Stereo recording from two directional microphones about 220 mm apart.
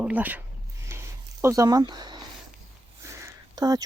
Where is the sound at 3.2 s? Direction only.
15° right (ahead or behind).